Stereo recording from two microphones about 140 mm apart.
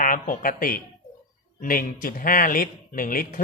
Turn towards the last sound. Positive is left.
turn(degrees=85)